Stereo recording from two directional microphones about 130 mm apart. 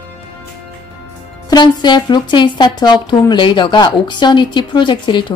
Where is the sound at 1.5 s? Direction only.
35° left (ahead or behind).